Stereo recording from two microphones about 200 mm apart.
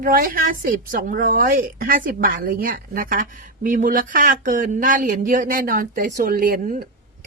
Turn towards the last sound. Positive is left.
turn(degrees=-45)  # may be behind; listen again after turning